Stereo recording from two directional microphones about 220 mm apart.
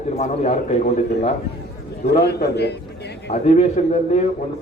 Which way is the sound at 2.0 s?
50° left (ahead or behind).